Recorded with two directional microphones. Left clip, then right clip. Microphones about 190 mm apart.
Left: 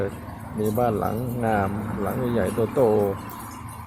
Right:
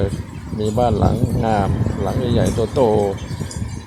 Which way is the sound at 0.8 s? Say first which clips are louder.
Right 7 dB; 20° right (ahead or behind).